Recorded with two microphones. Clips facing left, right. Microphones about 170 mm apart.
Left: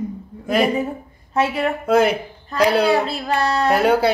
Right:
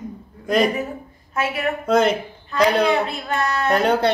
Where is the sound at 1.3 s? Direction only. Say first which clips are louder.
Left 5 dB; 30° left (ahead or behind).